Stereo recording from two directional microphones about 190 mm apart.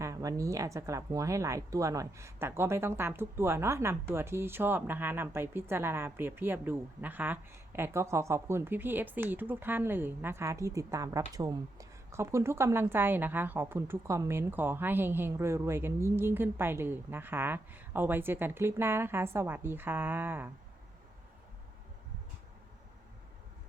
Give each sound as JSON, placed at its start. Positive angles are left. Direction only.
{"t": 0.0, "sound": "speech", "side_deg": -15}